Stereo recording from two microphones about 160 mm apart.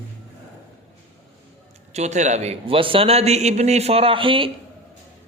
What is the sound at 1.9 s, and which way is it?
A man's voice, 45° right (ahead or behind).